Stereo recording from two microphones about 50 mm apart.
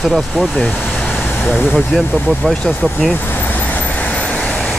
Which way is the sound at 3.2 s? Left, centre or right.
Left.